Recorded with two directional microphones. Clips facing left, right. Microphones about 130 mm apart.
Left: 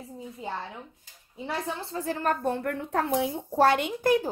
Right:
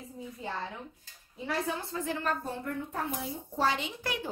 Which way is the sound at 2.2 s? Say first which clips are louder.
Left 6 dB; 60° left (ahead or behind).